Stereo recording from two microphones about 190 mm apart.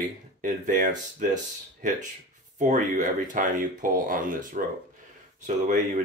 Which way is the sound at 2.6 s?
40° right (ahead or behind).